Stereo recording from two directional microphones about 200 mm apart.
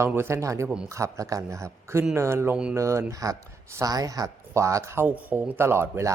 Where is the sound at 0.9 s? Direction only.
15° right (ahead or behind).